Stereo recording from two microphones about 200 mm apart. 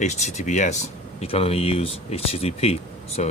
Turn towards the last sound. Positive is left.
turn(degrees=35)  # may be behind; listen again after turning